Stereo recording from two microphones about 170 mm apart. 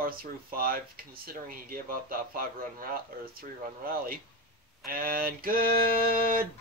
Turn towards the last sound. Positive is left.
turn(degrees=-60)  # may be behind; listen again after turning